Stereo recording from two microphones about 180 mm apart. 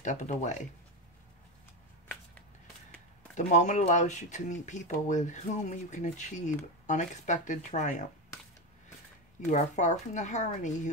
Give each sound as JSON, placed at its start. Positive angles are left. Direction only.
{"t": 0.0, "sound": "speech", "side_deg": 45}
{"t": 3.3, "sound": "speech", "side_deg": 40}
{"t": 9.4, "sound": "speech", "side_deg": 40}